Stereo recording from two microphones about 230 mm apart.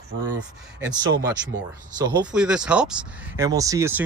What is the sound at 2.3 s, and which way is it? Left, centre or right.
Speech, centre.